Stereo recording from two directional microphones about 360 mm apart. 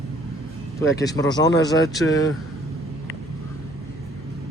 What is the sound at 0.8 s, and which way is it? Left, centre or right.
Speech, centre.